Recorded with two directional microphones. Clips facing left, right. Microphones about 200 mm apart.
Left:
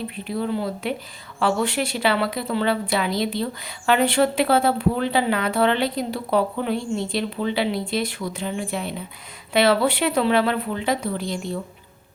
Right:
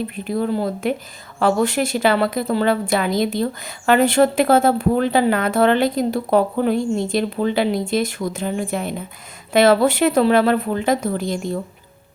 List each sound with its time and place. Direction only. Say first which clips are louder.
0.3 s a woman's voice: right 4 dB; 45° right (ahead or behind)